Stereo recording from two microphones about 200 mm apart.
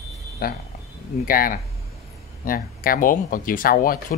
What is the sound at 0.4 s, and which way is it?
Speech, 50° left (ahead or behind).